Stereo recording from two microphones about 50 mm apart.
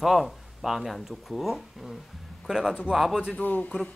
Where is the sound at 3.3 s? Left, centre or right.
Left.